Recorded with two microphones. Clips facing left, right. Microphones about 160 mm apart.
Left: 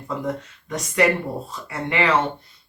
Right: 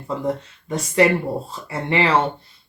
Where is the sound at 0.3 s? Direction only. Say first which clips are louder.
Right 3 dB; 30° right (ahead or behind).